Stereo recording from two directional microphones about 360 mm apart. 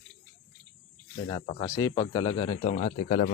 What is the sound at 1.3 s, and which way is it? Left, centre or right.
Speech, centre.